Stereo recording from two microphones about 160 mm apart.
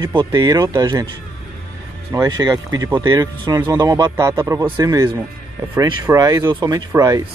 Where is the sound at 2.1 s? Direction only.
25° right (ahead or behind).